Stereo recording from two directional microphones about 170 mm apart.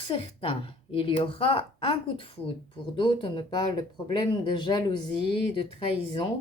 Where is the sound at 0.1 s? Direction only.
30° left (ahead or behind).